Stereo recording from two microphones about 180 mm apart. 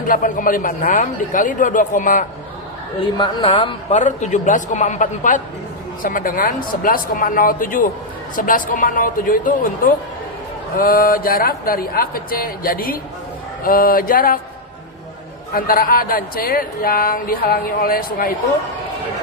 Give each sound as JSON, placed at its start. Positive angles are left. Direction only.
{"t": 0.1, "sound": "speech", "side_deg": 50}
{"t": 3.0, "sound": "a man's voice", "side_deg": 25}
{"t": 4.0, "sound": "speech", "side_deg": 40}
{"t": 15.5, "sound": "speech", "side_deg": 55}